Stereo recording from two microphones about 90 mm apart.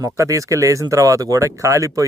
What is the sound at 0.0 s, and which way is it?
Speech, 35° right (ahead or behind).